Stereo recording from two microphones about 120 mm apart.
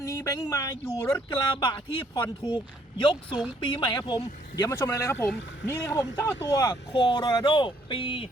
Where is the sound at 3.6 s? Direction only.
45° left (ahead or behind).